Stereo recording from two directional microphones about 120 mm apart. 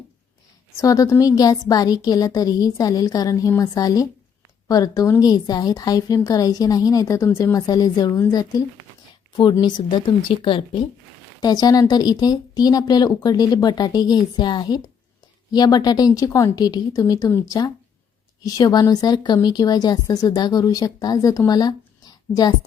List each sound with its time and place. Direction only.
0.8 s a woman's voice: 30° left (ahead or behind); by 10.8 s 45° left (ahead or behind)
11.3 s a woman's voice: 35° left (ahead or behind)